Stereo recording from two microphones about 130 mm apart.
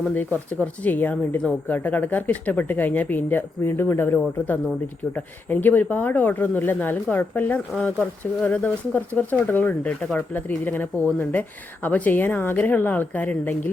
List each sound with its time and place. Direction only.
0.0 s speech: 10° left (ahead or behind)